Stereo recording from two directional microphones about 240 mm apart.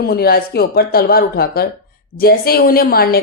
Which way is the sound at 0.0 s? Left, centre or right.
Left.